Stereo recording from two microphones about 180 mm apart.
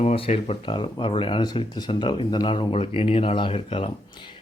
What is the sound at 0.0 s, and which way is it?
Speech, 40° left (ahead or behind).